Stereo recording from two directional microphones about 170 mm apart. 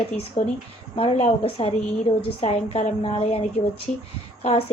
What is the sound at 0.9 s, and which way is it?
A woman's voice, 35° left (ahead or behind).